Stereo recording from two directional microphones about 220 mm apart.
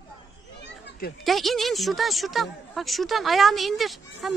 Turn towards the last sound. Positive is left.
turn(degrees=0)  # may be behind; listen again after turning